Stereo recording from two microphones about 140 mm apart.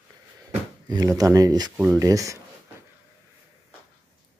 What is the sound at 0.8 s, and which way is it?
Speech, 25° right (ahead or behind).